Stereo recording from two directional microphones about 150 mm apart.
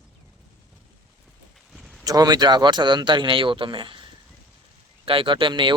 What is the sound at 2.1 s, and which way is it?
Speech, 25° right (ahead or behind).